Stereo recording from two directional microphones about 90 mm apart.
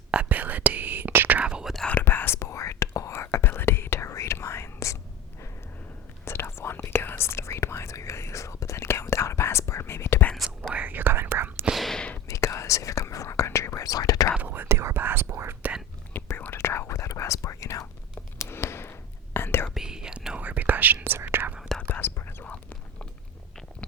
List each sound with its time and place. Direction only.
0.1 s whispering: 15° right (ahead or behind)
1.7 s whispering: 10° left (ahead or behind)
2.0 s whispering: 25° left (ahead or behind)
6.2 s whispering: 30° left (ahead or behind)
10.6 s whispering: 15° right (ahead or behind)
11.6 s whispering: centre (ahead or behind)
12.3 s whispering: 35° left (ahead or behind)
14.3 s whispering: 20° right (ahead or behind)
16.1 s whispering: 25° left (ahead or behind)
19.7 s whispering: 5° right (ahead or behind); by 21.5 s 25° right (ahead or behind)
21.8 s whispering: 20° left (ahead or behind)